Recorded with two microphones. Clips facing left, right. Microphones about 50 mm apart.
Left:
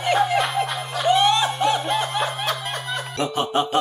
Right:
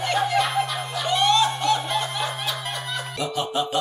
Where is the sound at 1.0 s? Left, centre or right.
Centre.